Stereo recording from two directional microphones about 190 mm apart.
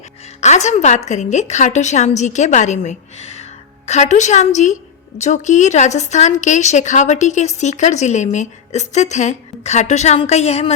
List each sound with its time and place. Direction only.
0.4 s a woman's voice: 40° left (ahead or behind)